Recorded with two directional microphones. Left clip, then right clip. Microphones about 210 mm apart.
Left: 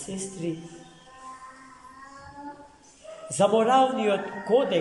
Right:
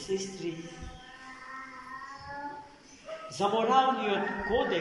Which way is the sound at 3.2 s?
55° left (ahead or behind).